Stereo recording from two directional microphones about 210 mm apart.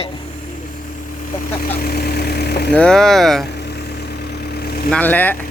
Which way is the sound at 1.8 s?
45° left (ahead or behind).